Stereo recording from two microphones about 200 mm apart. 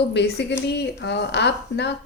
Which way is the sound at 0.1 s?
60° left (ahead or behind).